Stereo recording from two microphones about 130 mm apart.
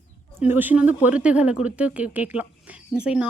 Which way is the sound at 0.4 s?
15° right (ahead or behind).